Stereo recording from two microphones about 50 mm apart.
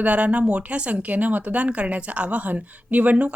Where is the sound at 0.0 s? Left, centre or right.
Right.